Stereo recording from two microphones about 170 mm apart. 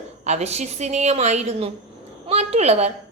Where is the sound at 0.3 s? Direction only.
40° right (ahead or behind).